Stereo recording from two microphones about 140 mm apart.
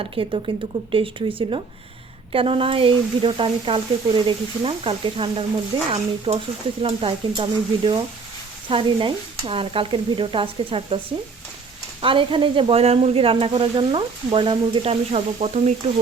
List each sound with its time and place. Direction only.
0.0 s speech: 40° right (ahead or behind)
12.0 s speech: 35° right (ahead or behind)